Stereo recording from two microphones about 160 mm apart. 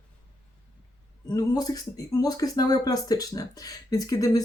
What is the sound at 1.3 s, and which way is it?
Speech, 25° left (ahead or behind).